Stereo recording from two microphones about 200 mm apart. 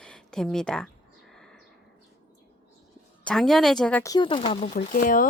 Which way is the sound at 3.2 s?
5° left (ahead or behind).